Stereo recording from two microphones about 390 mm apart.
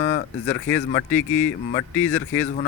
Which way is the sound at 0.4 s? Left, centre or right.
Centre.